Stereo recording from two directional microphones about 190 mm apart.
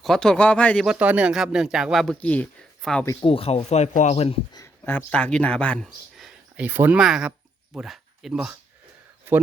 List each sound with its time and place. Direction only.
0.0 s speech: centre (ahead or behind)
0.9 s speech: 5° right (ahead or behind)
3.1 s speech: 25° left (ahead or behind)
4.6 s speech: 10° left (ahead or behind); by 9.4 s 10° right (ahead or behind)